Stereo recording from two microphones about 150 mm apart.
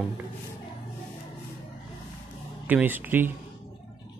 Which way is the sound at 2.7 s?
10° right (ahead or behind).